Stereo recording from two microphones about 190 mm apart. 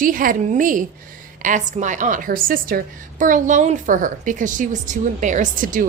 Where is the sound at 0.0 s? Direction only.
45° right (ahead or behind).